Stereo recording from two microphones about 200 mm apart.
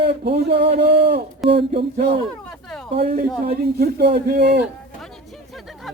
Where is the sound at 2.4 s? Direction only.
5° left (ahead or behind).